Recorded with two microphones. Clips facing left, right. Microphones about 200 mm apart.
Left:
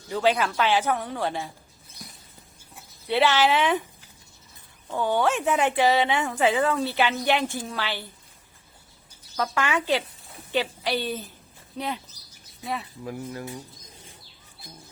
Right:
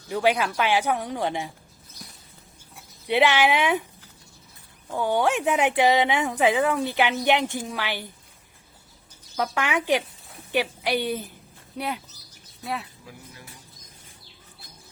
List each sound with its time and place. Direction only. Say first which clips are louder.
0.1 s speech: even; 10° right (ahead or behind)
2.0 s a sound: left 1 dB; 5° left (ahead or behind)
3.1 s speech: right 1 dB; 15° right (ahead or behind)
4.9 s speech: right 1 dB; 10° right (ahead or behind)
9.3 s speech: even; 15° right (ahead or behind)
13.1 s speech: left 12 dB; 55° left (ahead or behind)